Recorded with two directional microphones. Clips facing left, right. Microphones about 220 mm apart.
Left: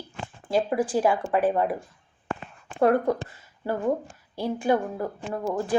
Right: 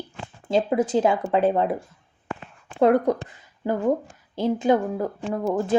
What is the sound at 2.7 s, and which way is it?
Speech, 20° right (ahead or behind).